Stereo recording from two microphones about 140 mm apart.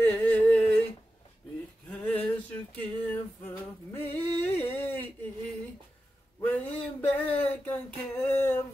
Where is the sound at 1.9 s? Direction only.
10° left (ahead or behind).